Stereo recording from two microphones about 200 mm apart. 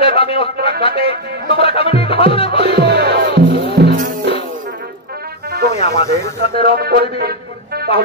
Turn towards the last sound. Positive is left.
turn(degrees=-50)  # may be behind; listen again after turning